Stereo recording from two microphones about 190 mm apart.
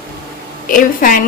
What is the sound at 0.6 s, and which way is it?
Speech, 45° left (ahead or behind).